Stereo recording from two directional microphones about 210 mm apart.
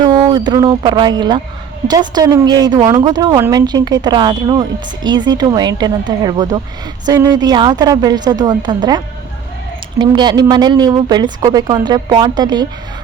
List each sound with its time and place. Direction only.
0.0 s speech: 20° right (ahead or behind)
10.0 s speech: 20° right (ahead or behind)